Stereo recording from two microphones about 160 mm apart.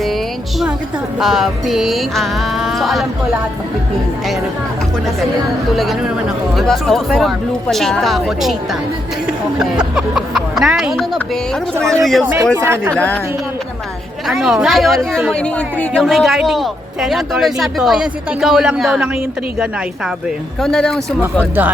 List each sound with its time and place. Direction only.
1.2 s speech: centre (ahead or behind)
5.7 s speech: centre (ahead or behind)
12.2 s speech: 10° right (ahead or behind)
12.9 s a woman's voice: 10° left (ahead or behind)
14.3 s speech: centre (ahead or behind)
20.6 s speech: 5° left (ahead or behind)
21.2 s speech: 10° right (ahead or behind)